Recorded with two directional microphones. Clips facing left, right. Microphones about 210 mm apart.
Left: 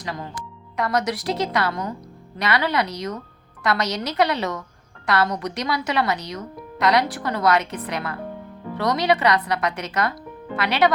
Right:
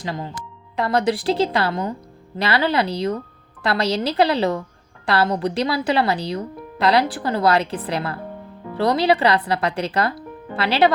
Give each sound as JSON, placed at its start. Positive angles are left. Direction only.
{"t": 0.0, "sound": "speech", "side_deg": -25}